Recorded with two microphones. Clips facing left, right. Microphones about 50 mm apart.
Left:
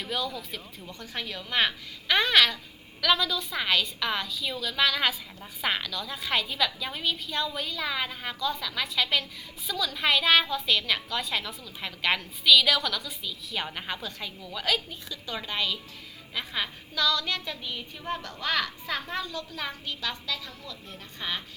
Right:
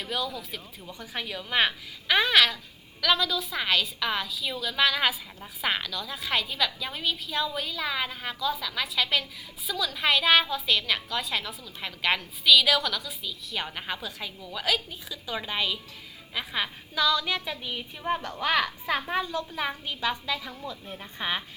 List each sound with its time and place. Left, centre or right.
0.0 s a woman's voice: centre; by 21.4 s right